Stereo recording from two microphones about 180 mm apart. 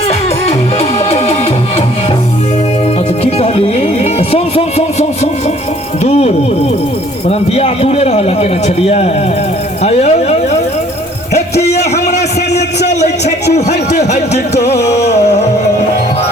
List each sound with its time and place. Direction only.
0.1 s music: 35° left (ahead or behind)
3.2 s music: 35° left (ahead or behind)
7.3 s a man's voice: 35° left (ahead or behind)
11.3 s a sound: 35° left (ahead or behind)
12.9 s a man's voice: 40° left (ahead or behind)
15.1 s music: 40° left (ahead or behind)